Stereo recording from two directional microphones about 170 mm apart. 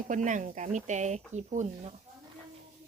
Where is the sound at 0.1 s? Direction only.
45° right (ahead or behind).